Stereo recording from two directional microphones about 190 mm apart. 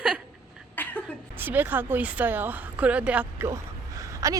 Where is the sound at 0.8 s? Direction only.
10° left (ahead or behind).